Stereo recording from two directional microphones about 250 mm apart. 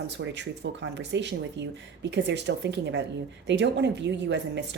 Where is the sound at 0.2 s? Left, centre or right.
Right.